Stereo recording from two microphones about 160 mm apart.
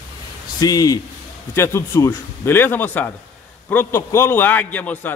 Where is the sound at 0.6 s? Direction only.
25° left (ahead or behind).